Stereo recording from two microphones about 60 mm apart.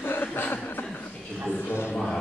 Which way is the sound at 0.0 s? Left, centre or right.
Left.